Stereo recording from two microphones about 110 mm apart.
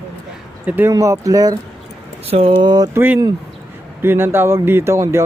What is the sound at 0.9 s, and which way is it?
Speech, 30° right (ahead or behind).